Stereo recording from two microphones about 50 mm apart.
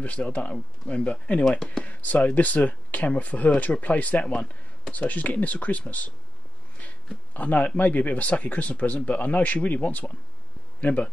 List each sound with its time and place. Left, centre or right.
0.0 s speech: left
1.6 s speech: centre
1.9 s speech: left
7.3 s speech: left